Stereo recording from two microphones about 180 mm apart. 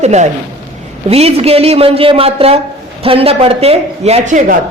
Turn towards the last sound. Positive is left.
turn(degrees=-45)  # may be behind; listen again after turning